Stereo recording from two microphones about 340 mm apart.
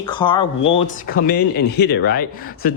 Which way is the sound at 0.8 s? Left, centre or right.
Left.